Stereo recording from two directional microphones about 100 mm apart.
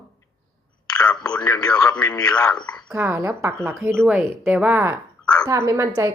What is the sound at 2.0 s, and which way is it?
Speech, 40° left (ahead or behind).